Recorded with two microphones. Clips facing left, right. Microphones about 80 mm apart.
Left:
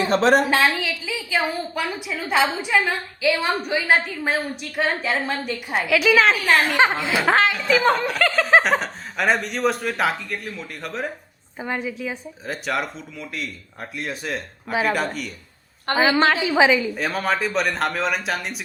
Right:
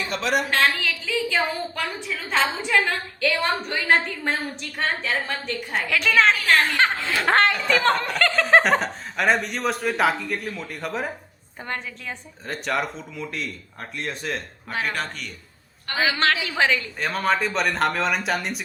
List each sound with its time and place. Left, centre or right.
0.0 s a woman's voice: left
0.5 s a woman's voice: centre
6.7 s a woman's voice: centre
7.3 s speech: centre
11.6 s speech: centre
15.9 s a woman's voice: left
16.3 s speech: centre